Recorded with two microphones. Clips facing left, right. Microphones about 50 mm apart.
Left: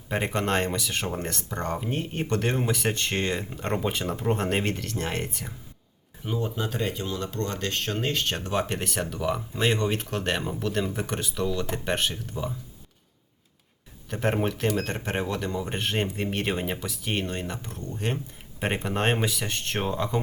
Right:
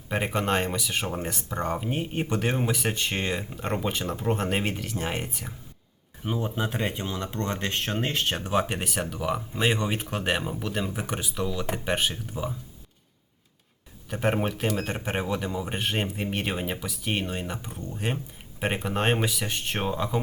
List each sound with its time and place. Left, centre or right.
0.1 s speech: centre
6.2 s speech: right
14.1 s speech: centre